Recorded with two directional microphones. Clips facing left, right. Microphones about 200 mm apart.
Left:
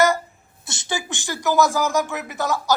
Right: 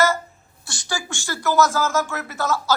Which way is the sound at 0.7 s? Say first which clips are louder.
Left 2 dB; 20° left (ahead or behind).